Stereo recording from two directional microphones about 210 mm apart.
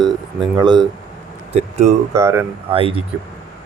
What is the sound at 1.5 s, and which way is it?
Speech, 35° right (ahead or behind).